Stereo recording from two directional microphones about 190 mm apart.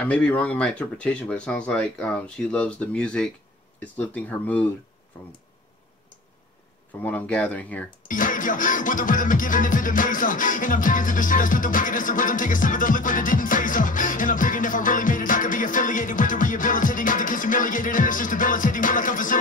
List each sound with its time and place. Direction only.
0.0 s speech: 5° left (ahead or behind)
7.0 s speech: 10° left (ahead or behind)
8.1 s music: 45° left (ahead or behind)